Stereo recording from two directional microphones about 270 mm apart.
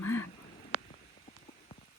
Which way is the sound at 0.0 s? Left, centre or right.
Left.